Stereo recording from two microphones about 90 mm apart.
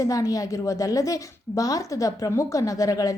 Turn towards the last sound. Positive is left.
turn(degrees=40)  # may be behind; listen again after turning